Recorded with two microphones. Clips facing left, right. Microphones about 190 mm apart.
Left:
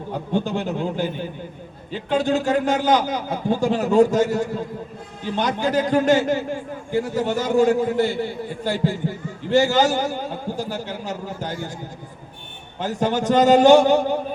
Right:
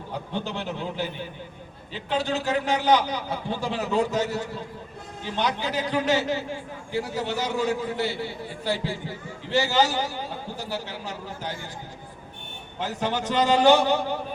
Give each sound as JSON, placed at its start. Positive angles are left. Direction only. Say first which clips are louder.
{"t": 0.1, "sound": "a man's voice", "louder": "left 8 dB", "side_deg": 45}
{"t": 12.8, "sound": "a man's voice", "louder": "left 6 dB", "side_deg": 45}